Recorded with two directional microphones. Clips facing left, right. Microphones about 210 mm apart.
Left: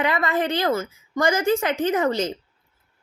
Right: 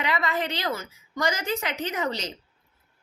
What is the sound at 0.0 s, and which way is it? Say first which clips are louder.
A woman's voice: left 5 dB; 50° left (ahead or behind).